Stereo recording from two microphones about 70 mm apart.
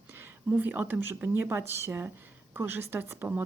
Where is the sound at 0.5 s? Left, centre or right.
Right.